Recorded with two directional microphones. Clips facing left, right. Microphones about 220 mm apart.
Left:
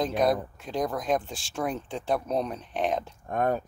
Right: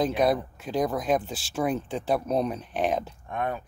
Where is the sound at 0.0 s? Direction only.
5° right (ahead or behind).